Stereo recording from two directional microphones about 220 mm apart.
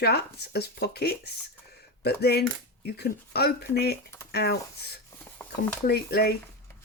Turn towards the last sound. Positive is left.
turn(degrees=45)  # may be behind; listen again after turning